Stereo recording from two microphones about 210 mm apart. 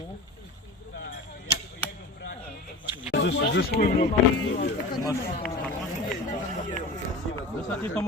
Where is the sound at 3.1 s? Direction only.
55° left (ahead or behind).